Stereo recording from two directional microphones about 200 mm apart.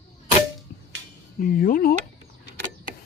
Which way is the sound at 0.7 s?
55° left (ahead or behind).